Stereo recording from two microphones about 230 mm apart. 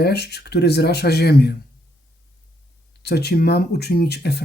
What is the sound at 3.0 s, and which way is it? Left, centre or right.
Speech, left.